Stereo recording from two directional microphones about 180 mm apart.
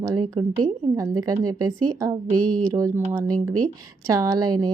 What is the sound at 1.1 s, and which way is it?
A woman's voice, 20° right (ahead or behind).